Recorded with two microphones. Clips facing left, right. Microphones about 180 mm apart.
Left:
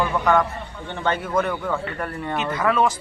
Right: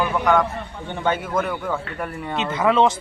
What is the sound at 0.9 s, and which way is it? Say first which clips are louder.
Speech: right 1 dB; 10° right (ahead or behind).